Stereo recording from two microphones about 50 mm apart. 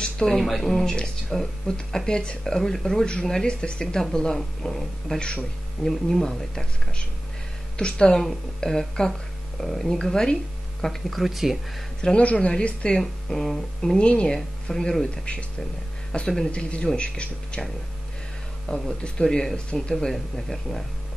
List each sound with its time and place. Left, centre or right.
0.0 s a sound: centre
0.4 s speech: centre
12.0 s speech: left
13.0 s speech: centre
13.9 s speech: left
16.1 s speech: centre
18.7 s speech: centre
20.1 s speech: centre